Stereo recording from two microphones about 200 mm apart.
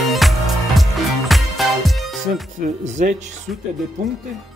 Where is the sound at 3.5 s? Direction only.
Centre (ahead or behind).